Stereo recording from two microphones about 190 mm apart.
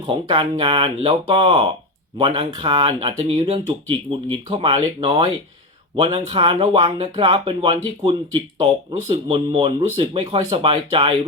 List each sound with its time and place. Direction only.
0.0 s speech: 25° right (ahead or behind)